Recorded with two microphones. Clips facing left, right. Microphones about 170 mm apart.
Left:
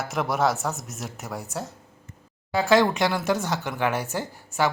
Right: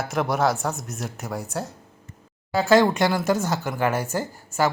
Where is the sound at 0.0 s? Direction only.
Centre (ahead or behind).